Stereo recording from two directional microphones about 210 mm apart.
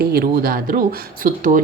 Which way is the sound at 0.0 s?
45° right (ahead or behind).